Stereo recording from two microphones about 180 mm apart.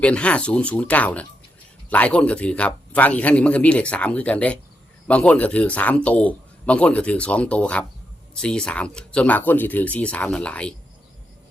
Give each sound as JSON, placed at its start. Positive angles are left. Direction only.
{"t": 0.0, "sound": "a man's voice", "side_deg": 5}